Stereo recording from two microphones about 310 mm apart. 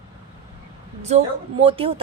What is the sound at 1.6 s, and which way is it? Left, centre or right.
Speech, centre.